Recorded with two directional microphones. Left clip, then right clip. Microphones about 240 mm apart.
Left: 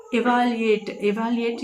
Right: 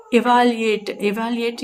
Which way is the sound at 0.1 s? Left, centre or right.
Right.